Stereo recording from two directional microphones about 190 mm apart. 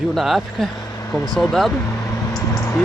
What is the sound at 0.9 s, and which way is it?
Vehicle, 15° left (ahead or behind).